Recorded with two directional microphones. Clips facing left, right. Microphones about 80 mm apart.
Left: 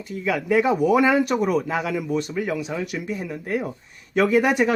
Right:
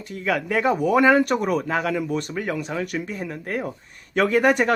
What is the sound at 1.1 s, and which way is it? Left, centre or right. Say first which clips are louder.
Speech: right 1 dB; right.